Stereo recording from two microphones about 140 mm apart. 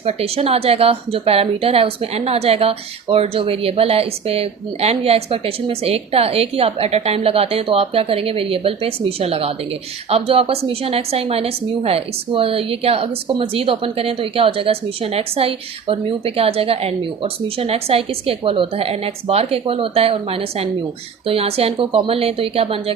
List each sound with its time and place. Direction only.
0.0 s a woman's voice: 45° right (ahead or behind)